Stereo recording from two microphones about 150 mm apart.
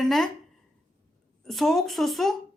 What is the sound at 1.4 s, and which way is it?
Speech, centre (ahead or behind).